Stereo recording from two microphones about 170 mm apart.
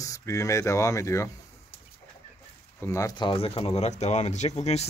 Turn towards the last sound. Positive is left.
turn(degrees=40)  # may be behind; listen again after turning